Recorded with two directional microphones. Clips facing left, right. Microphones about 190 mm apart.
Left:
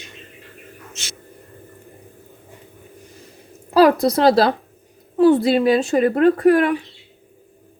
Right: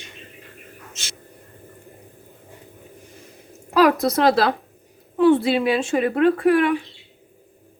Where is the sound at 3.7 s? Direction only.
35° left (ahead or behind).